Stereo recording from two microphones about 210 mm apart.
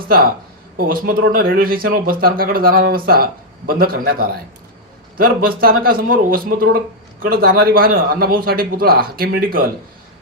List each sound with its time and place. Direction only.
0.8 s speech: 45° right (ahead or behind)